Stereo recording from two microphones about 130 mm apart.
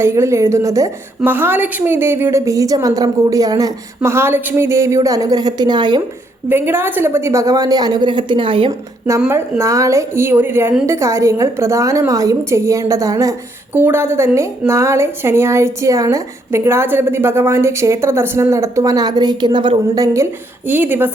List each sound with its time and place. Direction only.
0.0 s a woman's voice: 20° right (ahead or behind)
6.5 s a woman's voice: 15° right (ahead or behind); by 8.7 s 40° right (ahead or behind)
9.2 s a woman's voice: 20° right (ahead or behind); by 19.8 s 40° right (ahead or behind)
20.7 s speech: 15° right (ahead or behind)